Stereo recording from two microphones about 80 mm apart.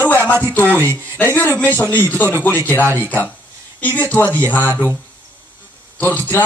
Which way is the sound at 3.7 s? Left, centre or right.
Left.